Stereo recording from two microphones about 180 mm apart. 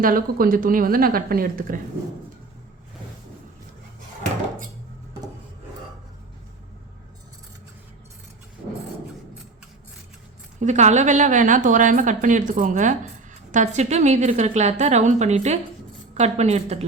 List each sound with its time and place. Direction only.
0.0 s speech: 50° right (ahead or behind)
10.6 s a woman's voice: 40° right (ahead or behind)